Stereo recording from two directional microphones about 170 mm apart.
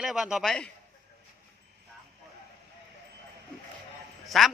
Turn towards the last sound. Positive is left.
turn(degrees=0)  # may be behind; listen again after turning